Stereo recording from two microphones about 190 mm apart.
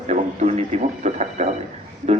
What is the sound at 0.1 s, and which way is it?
Radio, 35° right (ahead or behind).